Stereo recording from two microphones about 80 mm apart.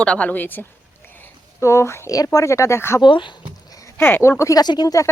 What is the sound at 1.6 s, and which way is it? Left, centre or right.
Speech, left.